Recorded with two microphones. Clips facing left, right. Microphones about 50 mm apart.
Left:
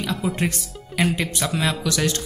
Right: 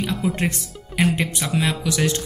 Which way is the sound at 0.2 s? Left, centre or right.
Centre.